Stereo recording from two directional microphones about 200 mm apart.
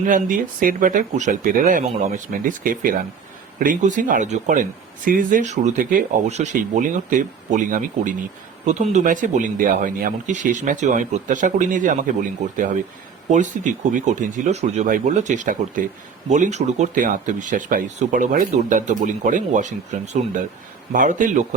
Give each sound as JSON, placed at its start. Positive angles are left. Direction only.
{"t": 0.0, "sound": "speech", "side_deg": -40}